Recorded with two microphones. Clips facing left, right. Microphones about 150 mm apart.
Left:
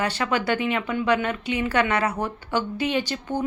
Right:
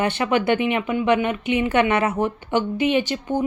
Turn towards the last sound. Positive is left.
turn(degrees=-15)  # may be behind; listen again after turning